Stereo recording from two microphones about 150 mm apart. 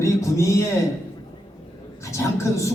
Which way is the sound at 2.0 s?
20° left (ahead or behind).